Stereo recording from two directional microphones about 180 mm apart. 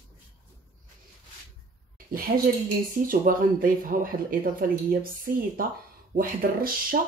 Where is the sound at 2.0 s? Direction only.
55° right (ahead or behind).